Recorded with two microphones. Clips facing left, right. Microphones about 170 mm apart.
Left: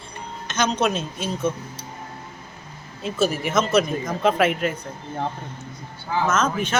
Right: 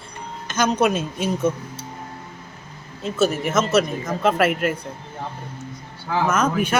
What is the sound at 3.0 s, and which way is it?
Speech, centre (ahead or behind).